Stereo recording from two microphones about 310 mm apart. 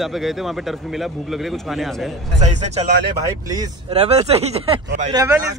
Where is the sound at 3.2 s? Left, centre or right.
Centre.